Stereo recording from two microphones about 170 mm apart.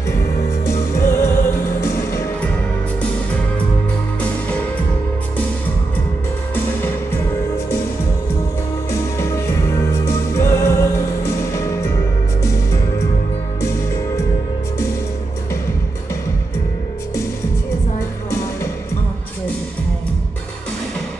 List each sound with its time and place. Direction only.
0.1 s music: 15° left (ahead or behind)
4.2 s music: 10° left (ahead or behind)
6.5 s music: 15° left (ahead or behind)
8.9 s music: 15° left (ahead or behind)